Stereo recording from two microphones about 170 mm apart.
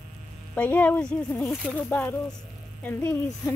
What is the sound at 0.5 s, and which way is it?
Speech, 10° left (ahead or behind).